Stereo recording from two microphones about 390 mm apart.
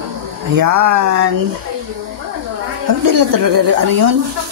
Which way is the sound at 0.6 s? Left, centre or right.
Right.